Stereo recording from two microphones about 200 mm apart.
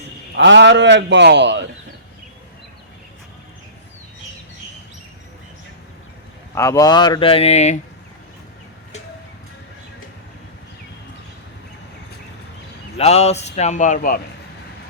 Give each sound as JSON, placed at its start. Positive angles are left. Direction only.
{"t": 0.3, "sound": "a man's voice", "side_deg": -60}
{"t": 6.5, "sound": "a man's voice", "side_deg": 15}
{"t": 13.0, "sound": "speech", "side_deg": 30}